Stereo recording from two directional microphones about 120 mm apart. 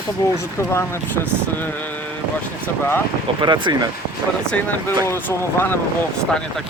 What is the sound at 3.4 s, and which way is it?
Speech, 40° right (ahead or behind).